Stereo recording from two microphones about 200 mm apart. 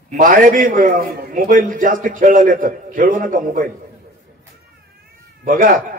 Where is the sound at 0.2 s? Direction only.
40° right (ahead or behind).